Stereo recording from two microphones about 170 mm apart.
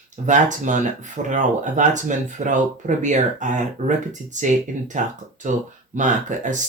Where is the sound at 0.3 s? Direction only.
45° right (ahead or behind).